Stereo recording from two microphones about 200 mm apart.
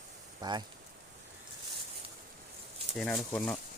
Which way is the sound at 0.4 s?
20° right (ahead or behind).